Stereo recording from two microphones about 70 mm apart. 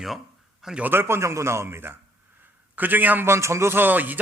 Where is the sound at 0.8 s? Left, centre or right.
Right.